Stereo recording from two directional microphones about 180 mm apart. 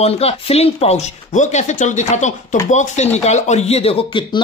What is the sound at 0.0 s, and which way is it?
Speech, 35° left (ahead or behind).